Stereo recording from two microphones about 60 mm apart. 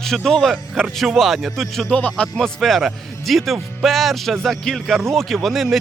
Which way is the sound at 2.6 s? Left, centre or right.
Centre.